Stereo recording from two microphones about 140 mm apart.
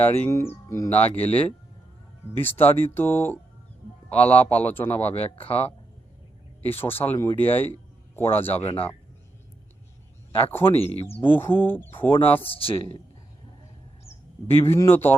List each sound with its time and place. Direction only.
0.0 s speech: 20° left (ahead or behind)
5.0 s speech: 50° left (ahead or behind)
6.8 s speech: 15° left (ahead or behind)
8.6 s speech: 40° left (ahead or behind)
10.3 s speech: 15° left (ahead or behind)
10.9 s speech: 45° left (ahead or behind)
11.2 s speech: 15° left (ahead or behind)
12.4 s speech: 40° left (ahead or behind)
14.7 s speech: 15° left (ahead or behind)